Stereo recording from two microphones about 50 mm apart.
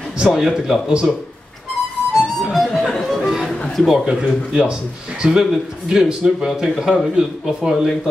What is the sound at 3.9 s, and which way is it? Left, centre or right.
A man's voice, centre.